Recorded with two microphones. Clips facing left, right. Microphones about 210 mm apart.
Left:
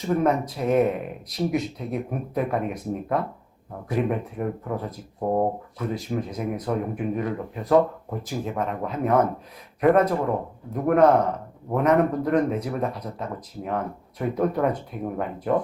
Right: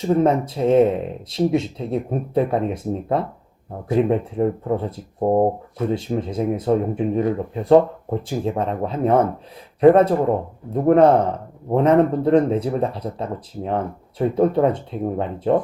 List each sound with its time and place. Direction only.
0.1 s speech: 30° right (ahead or behind)